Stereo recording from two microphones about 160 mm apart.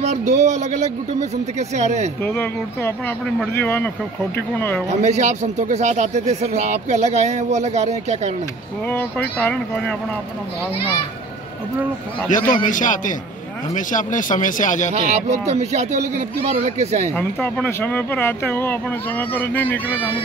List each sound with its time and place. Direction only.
0.0 s a man's voice: 50° right (ahead or behind)
2.2 s speech: 15° left (ahead or behind)
4.8 s a man's voice: 45° right (ahead or behind)
9.4 s speech: 5° left (ahead or behind)
12.3 s a man's voice: 55° left (ahead or behind)
15.5 s a man's voice: 45° right (ahead or behind)
17.1 s speech: 10° left (ahead or behind)